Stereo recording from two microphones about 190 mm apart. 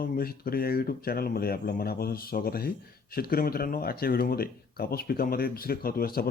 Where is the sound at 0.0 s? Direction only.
50° left (ahead or behind).